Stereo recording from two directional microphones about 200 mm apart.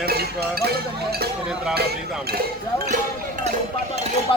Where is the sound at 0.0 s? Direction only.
50° right (ahead or behind).